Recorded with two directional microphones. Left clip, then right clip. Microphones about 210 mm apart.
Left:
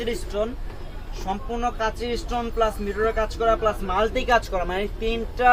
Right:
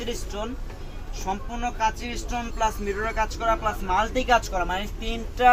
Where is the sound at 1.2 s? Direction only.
15° left (ahead or behind).